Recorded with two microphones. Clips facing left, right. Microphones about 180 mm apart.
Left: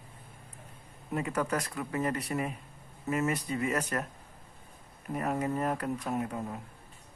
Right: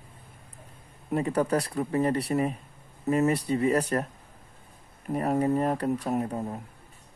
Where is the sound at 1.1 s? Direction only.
35° right (ahead or behind).